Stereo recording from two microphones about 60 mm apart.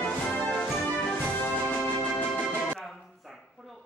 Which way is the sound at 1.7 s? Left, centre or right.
Left.